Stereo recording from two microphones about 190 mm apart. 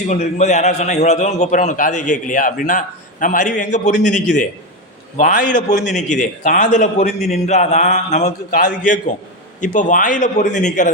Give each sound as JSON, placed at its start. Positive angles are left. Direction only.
{"t": 0.1, "sound": "a man's voice", "side_deg": 35}